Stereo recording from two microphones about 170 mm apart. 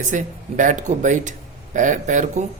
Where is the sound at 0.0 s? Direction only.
50° right (ahead or behind).